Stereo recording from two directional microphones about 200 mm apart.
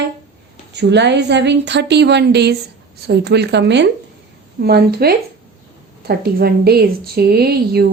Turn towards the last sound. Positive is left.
turn(degrees=-50)  # may be behind; listen again after turning